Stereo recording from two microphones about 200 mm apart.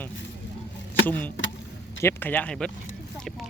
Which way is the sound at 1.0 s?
10° left (ahead or behind).